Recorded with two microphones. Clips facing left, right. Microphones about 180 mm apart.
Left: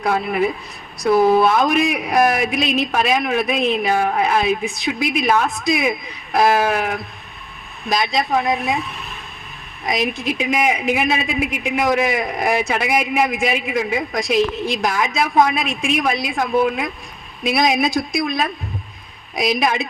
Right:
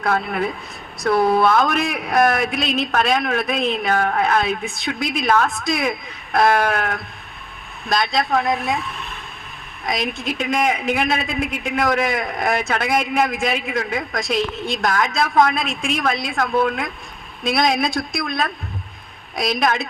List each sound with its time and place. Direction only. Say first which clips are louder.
0.0 s a woman's voice: left 2 dB; 5° left (ahead or behind)
1.5 s a man's voice: left 1 dB; 20° left (ahead or behind)
1.7 s a man's voice: left 3 dB; centre (ahead or behind)
9.8 s a woman's voice: left 3 dB; centre (ahead or behind)